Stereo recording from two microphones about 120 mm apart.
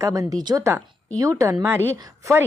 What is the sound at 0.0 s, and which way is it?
Speech, 30° right (ahead or behind).